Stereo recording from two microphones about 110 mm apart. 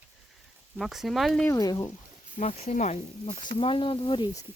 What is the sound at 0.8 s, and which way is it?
Speech, centre (ahead or behind).